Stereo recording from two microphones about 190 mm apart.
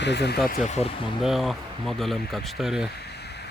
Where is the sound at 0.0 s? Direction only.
60° left (ahead or behind).